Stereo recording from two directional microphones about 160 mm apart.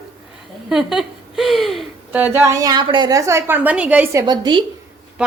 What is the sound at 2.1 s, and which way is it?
A woman's voice, 10° right (ahead or behind).